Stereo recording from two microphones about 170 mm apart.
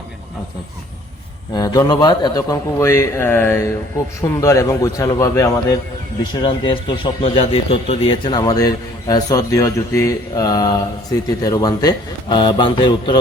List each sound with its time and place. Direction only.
1.5 s a man's voice: 20° left (ahead or behind)
6.4 s speech: 30° left (ahead or behind)